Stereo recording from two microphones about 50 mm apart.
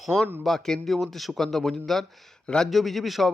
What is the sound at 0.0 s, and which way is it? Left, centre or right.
Speech, centre.